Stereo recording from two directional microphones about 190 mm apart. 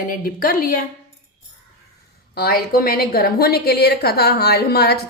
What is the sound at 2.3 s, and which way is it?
A woman's voice, 50° left (ahead or behind).